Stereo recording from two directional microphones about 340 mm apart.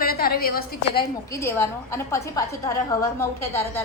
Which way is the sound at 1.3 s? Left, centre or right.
Centre.